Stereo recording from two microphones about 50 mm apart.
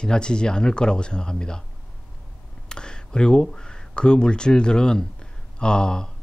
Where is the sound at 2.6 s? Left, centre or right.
Centre.